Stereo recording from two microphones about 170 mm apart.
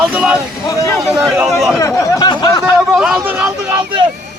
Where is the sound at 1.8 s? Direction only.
20° left (ahead or behind).